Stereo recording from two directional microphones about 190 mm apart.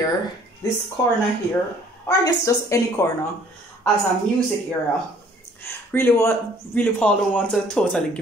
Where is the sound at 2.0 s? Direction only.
15° left (ahead or behind).